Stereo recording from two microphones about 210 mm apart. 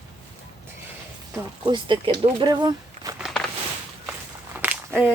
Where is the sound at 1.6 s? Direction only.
20° right (ahead or behind).